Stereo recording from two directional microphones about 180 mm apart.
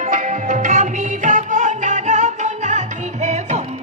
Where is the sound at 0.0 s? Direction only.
45° right (ahead or behind).